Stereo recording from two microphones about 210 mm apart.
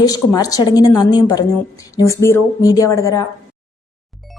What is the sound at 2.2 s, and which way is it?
A woman's voice, 15° left (ahead or behind).